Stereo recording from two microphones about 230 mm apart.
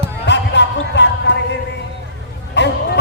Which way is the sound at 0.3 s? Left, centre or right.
Left.